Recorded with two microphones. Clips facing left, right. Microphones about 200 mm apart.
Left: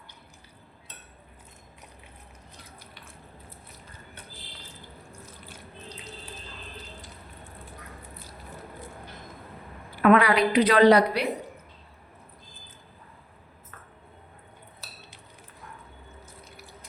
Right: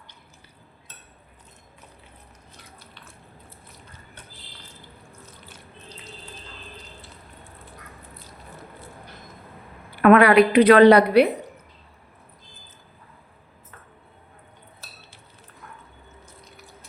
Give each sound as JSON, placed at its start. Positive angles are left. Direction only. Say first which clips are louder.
{"t": 10.0, "sound": "a woman's voice", "louder": "right 6 dB", "side_deg": -60}